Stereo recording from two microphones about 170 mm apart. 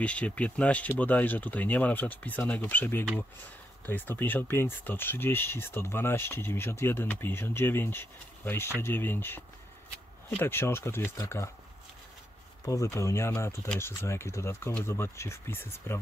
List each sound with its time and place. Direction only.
0.0 s speech: 5° left (ahead or behind)
10.4 s speech: 15° left (ahead or behind)
12.6 s speech: 20° left (ahead or behind)